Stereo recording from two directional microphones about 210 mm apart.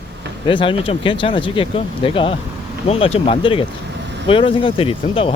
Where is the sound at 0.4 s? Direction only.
25° left (ahead or behind).